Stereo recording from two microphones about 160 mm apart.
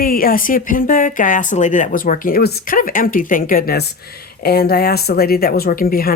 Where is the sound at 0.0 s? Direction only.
65° left (ahead or behind).